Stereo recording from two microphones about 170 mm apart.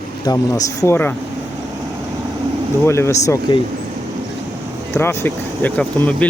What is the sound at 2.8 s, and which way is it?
Speech, 15° left (ahead or behind).